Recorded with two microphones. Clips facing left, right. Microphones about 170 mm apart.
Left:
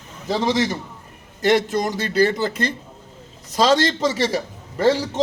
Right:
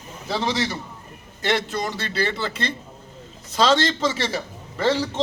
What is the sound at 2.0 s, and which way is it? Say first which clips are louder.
Speech: left 7 dB; 45° left (ahead or behind).